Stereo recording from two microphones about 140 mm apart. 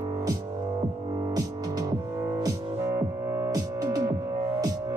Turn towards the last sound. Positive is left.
turn(degrees=-30)  # may be behind; listen again after turning